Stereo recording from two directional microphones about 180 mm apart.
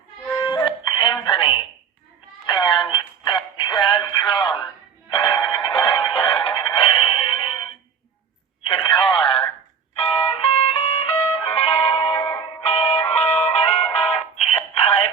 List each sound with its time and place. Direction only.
0.3 s music: 25° left (ahead or behind)
2.5 s synthetic singing: 25° left (ahead or behind)
5.0 s music: 30° left (ahead or behind)
8.6 s a sound: 25° left (ahead or behind)
9.9 s music: 35° left (ahead or behind)
14.8 s synthetic singing: 35° left (ahead or behind)